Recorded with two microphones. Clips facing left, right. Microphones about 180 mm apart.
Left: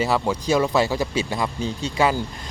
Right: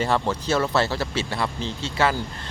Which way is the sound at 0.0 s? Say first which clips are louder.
Left 1 dB; 10° left (ahead or behind).